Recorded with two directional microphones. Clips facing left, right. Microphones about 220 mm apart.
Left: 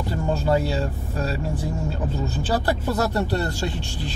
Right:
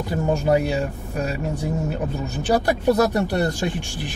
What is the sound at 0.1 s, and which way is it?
Speech, 15° right (ahead or behind).